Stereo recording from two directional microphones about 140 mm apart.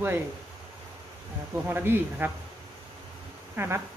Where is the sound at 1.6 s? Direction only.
15° right (ahead or behind).